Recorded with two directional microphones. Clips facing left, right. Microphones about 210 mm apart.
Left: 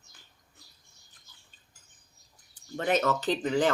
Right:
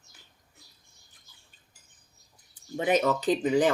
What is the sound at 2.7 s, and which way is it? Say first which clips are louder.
Speech: right 2 dB; 10° right (ahead or behind).